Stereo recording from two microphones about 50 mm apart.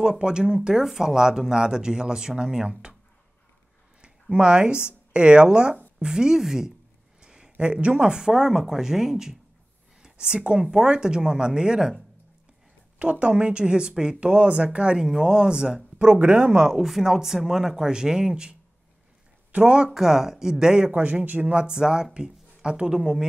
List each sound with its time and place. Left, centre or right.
0.0 s speech: centre
4.0 s speech: right
7.2 s a sound: centre
8.2 s speech: centre
13.0 s speech: right
16.2 s speech: right
16.4 s speech: centre
16.8 s speech: centre
21.0 s speech: right
21.5 s speech: centre